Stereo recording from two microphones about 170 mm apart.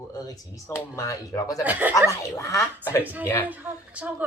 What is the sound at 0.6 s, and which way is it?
Speech, 15° left (ahead or behind).